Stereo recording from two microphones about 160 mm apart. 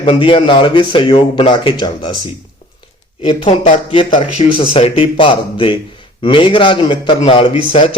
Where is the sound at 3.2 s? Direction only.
35° left (ahead or behind).